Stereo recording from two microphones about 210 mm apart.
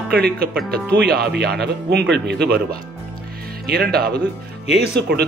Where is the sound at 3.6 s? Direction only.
45° right (ahead or behind).